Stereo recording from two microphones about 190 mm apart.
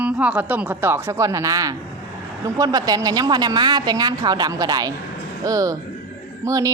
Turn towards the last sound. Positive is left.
turn(degrees=-15)  # may be behind; listen again after turning